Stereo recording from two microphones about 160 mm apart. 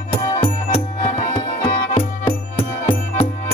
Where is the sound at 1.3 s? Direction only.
45° left (ahead or behind).